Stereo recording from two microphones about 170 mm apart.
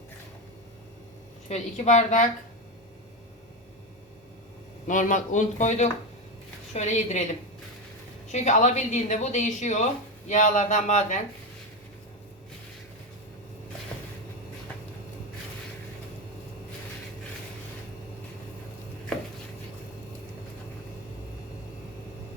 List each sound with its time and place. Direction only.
1.5 s speech: 40° left (ahead or behind)
4.9 s speech: 50° left (ahead or behind)
8.3 s speech: 45° left (ahead or behind)